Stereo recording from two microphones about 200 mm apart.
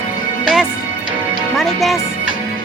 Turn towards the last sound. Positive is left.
turn(degrees=0)  # may be behind; listen again after turning